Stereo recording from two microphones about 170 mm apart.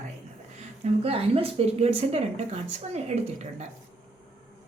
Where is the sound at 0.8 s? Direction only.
35° right (ahead or behind).